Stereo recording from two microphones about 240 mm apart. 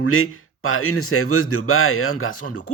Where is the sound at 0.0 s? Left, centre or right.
Left.